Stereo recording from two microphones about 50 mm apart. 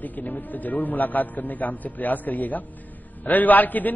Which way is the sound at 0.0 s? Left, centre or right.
Left.